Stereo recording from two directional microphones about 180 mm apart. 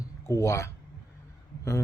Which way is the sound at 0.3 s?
15° left (ahead or behind).